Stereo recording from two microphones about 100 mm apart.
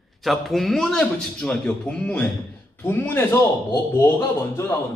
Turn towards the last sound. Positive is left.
turn(degrees=25)  # may be behind; listen again after turning